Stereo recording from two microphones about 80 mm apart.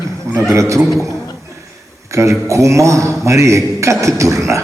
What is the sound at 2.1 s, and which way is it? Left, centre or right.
A man's voice, right.